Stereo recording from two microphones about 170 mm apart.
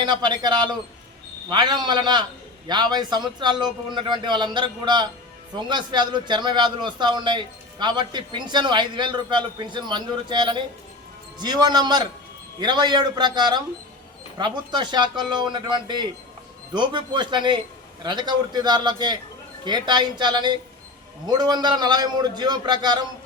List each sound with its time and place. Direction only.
0.0 s a man's voice: 25° right (ahead or behind)